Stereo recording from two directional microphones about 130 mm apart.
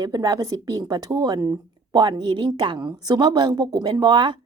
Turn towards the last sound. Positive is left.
turn(degrees=-35)  # may be behind; listen again after turning